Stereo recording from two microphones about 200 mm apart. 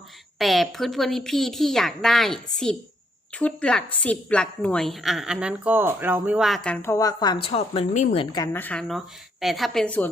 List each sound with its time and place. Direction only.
0.3 s a woman's voice: centre (ahead or behind); by 8.4 s 25° left (ahead or behind)
8.5 s a woman's voice: 5° left (ahead or behind)